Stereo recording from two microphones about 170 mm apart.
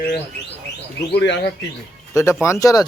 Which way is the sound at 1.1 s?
90° left.